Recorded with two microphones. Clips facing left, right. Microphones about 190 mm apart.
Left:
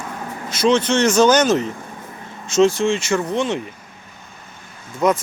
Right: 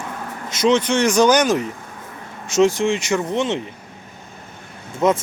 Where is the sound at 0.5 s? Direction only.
20° right (ahead or behind).